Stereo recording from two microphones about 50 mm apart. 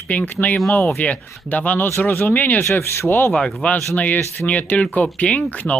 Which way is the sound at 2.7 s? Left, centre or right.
Left.